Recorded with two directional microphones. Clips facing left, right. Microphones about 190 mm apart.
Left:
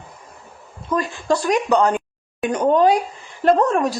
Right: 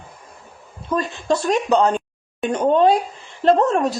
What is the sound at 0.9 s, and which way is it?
Speech, 20° right (ahead or behind).